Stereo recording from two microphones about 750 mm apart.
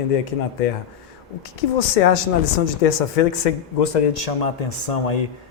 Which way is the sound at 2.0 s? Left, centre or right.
Left.